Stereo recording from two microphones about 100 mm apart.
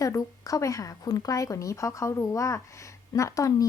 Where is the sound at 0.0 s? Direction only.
35° left (ahead or behind).